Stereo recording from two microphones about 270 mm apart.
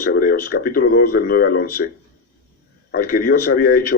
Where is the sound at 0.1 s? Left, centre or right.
Left.